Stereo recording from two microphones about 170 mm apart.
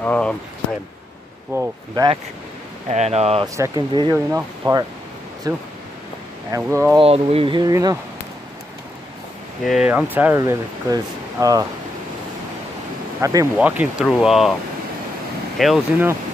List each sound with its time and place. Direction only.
0.0 s speech: 10° left (ahead or behind)
1.5 s speech: 15° right (ahead or behind)
2.9 s speech: 40° right (ahead or behind)
3.5 s speech: 20° right (ahead or behind)
4.3 s speech: 15° right (ahead or behind)
7.0 s speech: 35° right (ahead or behind)
9.7 s speech: 5° right (ahead or behind); by 11.6 s 20° right (ahead or behind)
13.2 s speech: 20° right (ahead or behind)
13.6 s speech: 5° right (ahead or behind)
15.5 s speech: centre (ahead or behind)